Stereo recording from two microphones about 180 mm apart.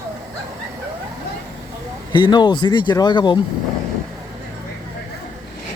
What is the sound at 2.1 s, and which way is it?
Speech, 25° left (ahead or behind).